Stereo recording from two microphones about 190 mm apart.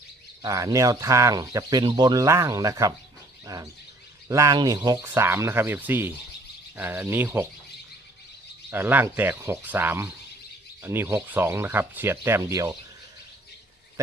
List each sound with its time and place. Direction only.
0.4 s speech: 15° right (ahead or behind)
3.4 s bird: 20° right (ahead or behind)
4.3 s speech: 15° right (ahead or behind)
8.7 s speech: 10° right (ahead or behind)